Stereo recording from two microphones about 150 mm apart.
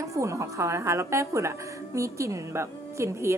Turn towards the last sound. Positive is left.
turn(degrees=-20)  # may be behind; listen again after turning